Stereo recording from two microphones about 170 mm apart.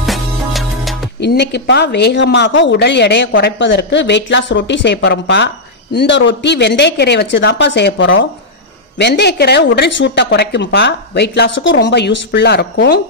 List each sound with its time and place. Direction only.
0.0 s music: centre (ahead or behind)
1.2 s a woman's voice: 85° left